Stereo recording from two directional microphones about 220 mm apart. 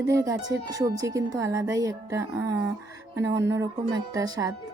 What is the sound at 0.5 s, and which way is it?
A woman's voice, 15° right (ahead or behind).